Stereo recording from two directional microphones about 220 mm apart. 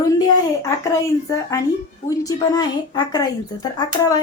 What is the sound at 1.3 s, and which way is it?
Speech, 15° left (ahead or behind).